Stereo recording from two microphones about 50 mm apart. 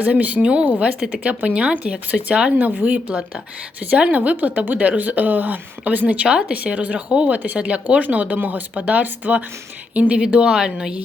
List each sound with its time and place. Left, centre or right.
0.0 s a woman's voice: right; by 10.9 s centre